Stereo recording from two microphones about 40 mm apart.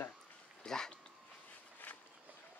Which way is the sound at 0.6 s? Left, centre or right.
Centre.